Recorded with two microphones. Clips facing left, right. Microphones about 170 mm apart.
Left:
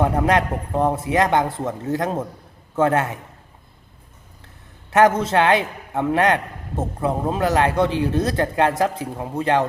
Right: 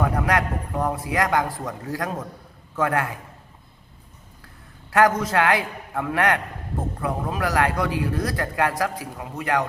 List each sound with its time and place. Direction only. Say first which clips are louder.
0.0 s a man's voice: left 4 dB; 25° left (ahead or behind)
4.9 s a man's voice: left 3 dB; 20° left (ahead or behind)